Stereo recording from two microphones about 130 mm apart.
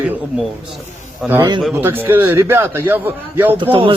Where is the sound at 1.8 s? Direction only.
15° right (ahead or behind).